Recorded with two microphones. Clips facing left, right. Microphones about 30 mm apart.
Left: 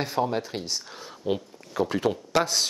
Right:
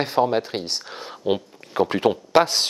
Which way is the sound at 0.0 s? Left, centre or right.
Right.